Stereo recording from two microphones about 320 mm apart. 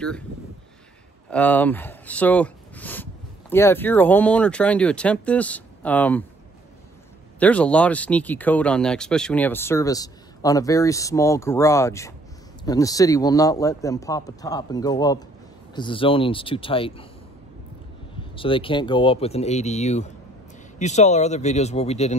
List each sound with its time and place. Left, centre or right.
1.3 s speech: centre
7.3 s speech: centre
18.3 s speech: centre